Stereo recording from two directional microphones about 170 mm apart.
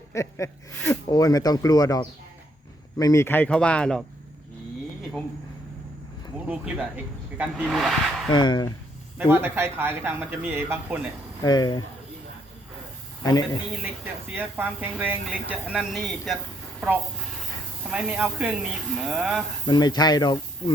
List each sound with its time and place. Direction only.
0.1 s speech: 15° left (ahead or behind)
3.0 s speech: 15° left (ahead or behind)
7.3 s speech: 5° right (ahead or behind)
8.3 s speech: 25° left (ahead or behind)
9.1 s speech: 15° right (ahead or behind)
11.4 s speech: 25° left (ahead or behind)
13.2 s speech: 20° left (ahead or behind)
13.8 s speech: 10° right (ahead or behind)
17.9 s speech: 10° right (ahead or behind)
19.6 s speech: 25° left (ahead or behind)